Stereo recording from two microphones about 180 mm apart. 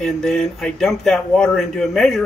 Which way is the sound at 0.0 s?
Centre (ahead or behind).